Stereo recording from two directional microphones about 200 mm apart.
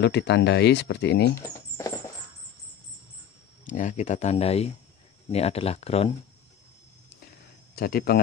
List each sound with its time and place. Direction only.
0.0 s speech: 55° left (ahead or behind)
3.6 s speech: 40° left (ahead or behind)
7.7 s speech: 50° left (ahead or behind)